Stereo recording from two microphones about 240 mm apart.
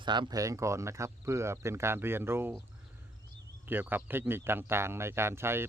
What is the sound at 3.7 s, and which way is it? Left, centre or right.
Speech, centre.